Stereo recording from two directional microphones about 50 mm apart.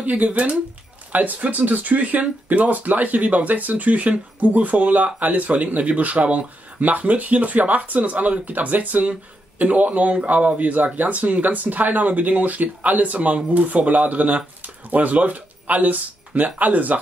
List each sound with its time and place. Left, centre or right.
0.0 s speech: right